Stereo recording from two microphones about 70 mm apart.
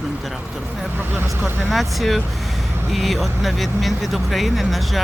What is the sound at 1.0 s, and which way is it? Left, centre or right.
Speech, right.